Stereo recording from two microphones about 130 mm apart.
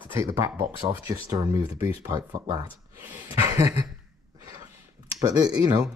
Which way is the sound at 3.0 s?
15° right (ahead or behind).